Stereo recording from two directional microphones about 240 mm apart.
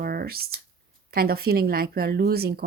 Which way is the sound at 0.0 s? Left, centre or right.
Right.